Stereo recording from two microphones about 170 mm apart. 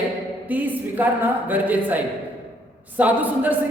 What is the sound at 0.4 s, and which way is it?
A man's voice, 10° right (ahead or behind).